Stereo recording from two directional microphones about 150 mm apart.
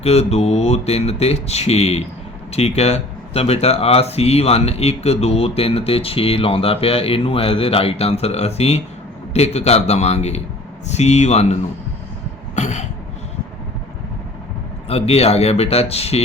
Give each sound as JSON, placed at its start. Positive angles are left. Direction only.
{"t": 0.0, "sound": "speech", "side_deg": 45}
{"t": 12.5, "sound": "cough", "side_deg": 50}
{"t": 14.8, "sound": "speech", "side_deg": 40}